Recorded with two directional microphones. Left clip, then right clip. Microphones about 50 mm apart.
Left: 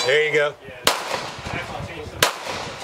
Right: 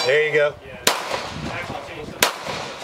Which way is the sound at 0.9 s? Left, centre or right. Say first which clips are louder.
Even; centre.